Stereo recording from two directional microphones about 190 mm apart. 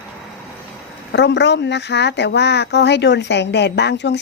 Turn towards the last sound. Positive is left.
turn(degrees=65)  # may be behind; listen again after turning